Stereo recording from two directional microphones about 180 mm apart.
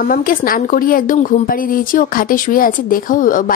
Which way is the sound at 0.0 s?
50° left (ahead or behind).